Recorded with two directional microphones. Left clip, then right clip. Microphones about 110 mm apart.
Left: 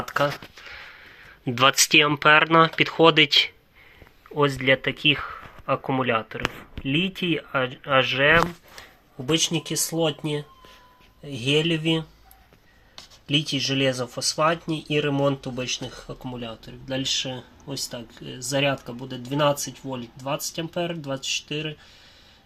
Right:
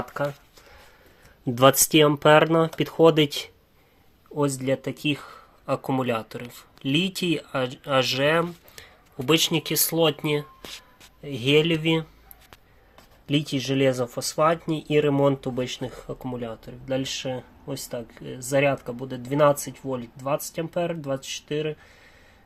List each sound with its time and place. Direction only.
1.5 s speech: 40° right (ahead or behind)
2.0 s speech: 30° right (ahead or behind)
4.4 s speech: 20° right (ahead or behind)
9.3 s speech: 10° right (ahead or behind)
11.4 s speech: 40° right (ahead or behind)
13.3 s speech: 40° right (ahead or behind)